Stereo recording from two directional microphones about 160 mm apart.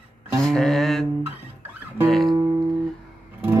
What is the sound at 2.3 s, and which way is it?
Music, 25° right (ahead or behind).